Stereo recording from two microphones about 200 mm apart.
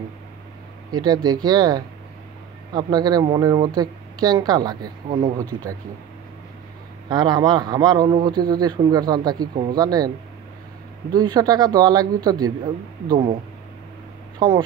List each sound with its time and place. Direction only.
0.9 s a man's voice: 20° right (ahead or behind)
7.1 s a man's voice: 20° right (ahead or behind)
11.1 s a man's voice: 20° right (ahead or behind)
13.1 s a man's voice: 25° right (ahead or behind)
14.4 s a man's voice: 20° right (ahead or behind)